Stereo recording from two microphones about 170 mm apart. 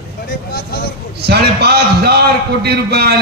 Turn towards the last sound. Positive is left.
turn(degrees=-70)  # may be behind; listen again after turning